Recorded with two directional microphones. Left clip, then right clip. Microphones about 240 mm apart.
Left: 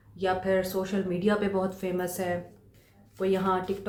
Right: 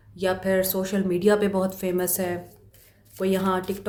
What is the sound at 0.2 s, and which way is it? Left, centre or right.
Speech, right.